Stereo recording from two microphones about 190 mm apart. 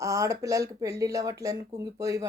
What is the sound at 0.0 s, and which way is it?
Speech, 15° right (ahead or behind).